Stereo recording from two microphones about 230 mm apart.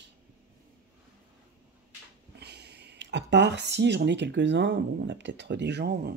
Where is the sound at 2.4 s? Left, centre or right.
Right.